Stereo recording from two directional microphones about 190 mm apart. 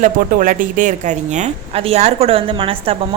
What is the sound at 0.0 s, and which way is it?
Speech, 45° right (ahead or behind).